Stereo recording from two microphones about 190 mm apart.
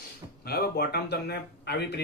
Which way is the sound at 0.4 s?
55° left (ahead or behind).